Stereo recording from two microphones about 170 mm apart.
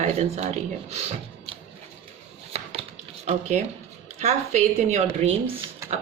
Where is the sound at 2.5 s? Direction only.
40° right (ahead or behind).